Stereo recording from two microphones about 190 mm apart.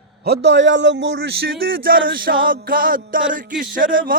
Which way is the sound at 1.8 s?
50° right (ahead or behind).